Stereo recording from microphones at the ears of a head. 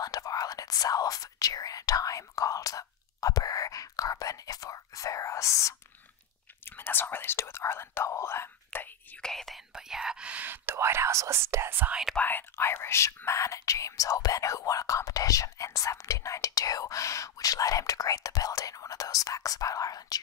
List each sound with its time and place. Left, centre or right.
0.0 s whispering: left
6.8 s whispering: left
9.2 s whispering: centre
10.2 s whispering: right
12.5 s whispering: left